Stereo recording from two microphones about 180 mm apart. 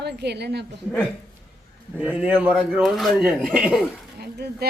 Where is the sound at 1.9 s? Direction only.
10° right (ahead or behind).